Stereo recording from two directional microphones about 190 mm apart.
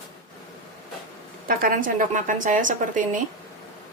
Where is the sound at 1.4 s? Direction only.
45° right (ahead or behind).